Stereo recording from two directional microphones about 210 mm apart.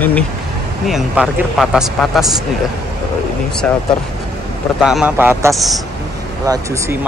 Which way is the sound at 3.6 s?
5° left (ahead or behind).